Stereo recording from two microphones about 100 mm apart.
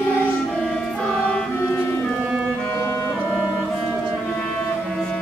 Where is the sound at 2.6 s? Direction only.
25° left (ahead or behind).